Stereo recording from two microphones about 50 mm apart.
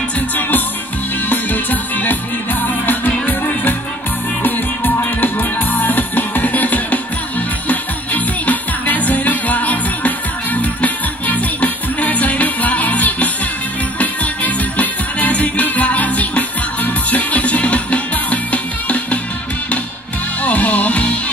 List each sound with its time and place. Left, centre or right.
1.3 s music: left
4.4 s music: left
20.4 s music: left